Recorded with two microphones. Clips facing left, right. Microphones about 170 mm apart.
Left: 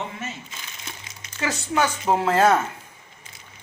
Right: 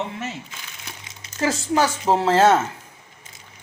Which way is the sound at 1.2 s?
35° right (ahead or behind).